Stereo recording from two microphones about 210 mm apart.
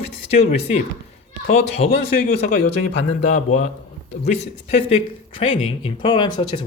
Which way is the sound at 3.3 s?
35° left (ahead or behind).